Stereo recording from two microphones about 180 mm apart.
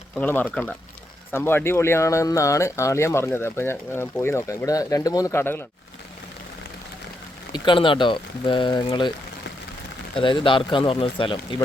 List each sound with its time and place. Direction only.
0.2 s speech: 10° left (ahead or behind)
7.5 s speech: 25° left (ahead or behind)
10.2 s speech: 30° left (ahead or behind)